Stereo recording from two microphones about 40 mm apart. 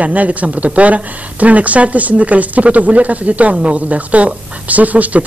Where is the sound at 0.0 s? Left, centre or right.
Right.